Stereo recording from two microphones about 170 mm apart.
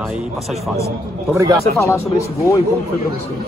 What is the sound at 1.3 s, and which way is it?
Speech, 20° right (ahead or behind).